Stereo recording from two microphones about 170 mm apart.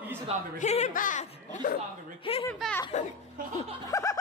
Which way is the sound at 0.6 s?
40° left (ahead or behind).